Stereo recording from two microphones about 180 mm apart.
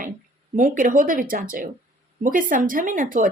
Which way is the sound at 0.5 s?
45° right (ahead or behind).